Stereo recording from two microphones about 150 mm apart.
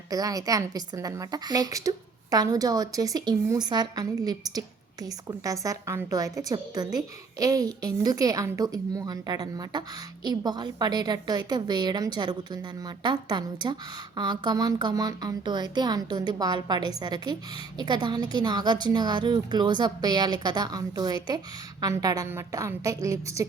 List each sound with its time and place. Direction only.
0.1 s a woman's voice: 25° right (ahead or behind)